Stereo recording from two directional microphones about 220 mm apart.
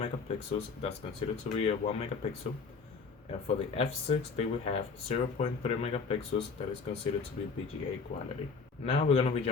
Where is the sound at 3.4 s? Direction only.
30° left (ahead or behind).